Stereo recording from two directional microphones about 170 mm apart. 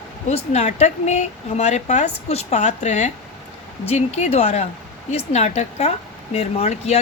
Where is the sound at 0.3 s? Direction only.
40° left (ahead or behind).